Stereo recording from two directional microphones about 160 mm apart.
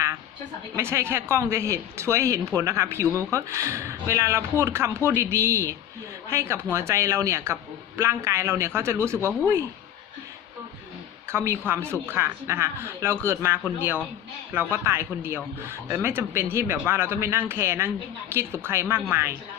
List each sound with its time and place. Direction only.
0.8 s a woman's voice: 15° right (ahead or behind)
11.3 s a woman's voice: 15° right (ahead or behind)